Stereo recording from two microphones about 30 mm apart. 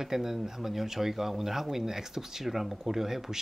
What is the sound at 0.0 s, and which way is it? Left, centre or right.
Speech, centre.